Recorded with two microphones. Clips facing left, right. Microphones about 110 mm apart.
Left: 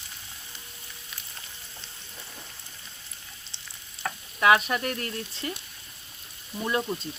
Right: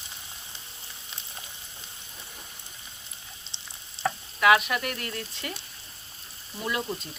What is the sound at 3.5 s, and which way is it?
Frying, 25° right (ahead or behind).